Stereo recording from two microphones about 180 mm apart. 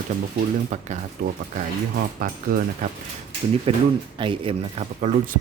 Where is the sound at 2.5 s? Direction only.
55° right (ahead or behind).